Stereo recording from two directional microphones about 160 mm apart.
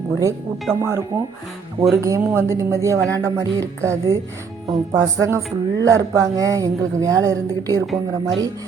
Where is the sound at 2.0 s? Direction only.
20° right (ahead or behind).